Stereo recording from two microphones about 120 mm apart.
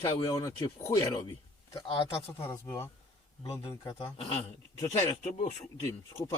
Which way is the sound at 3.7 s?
40° left (ahead or behind).